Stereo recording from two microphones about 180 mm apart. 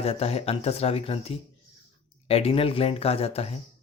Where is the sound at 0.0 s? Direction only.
35° left (ahead or behind).